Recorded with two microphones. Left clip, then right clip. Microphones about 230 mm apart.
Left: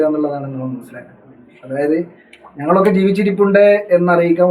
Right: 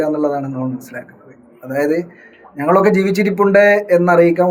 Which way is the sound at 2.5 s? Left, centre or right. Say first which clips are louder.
Right 1 dB; right.